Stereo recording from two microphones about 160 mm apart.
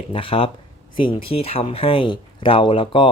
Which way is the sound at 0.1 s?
35° left (ahead or behind).